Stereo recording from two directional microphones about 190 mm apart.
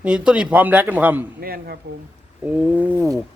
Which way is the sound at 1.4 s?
55° right (ahead or behind).